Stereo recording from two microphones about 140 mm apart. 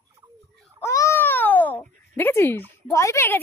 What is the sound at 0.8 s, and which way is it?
Babbling, 20° left (ahead or behind).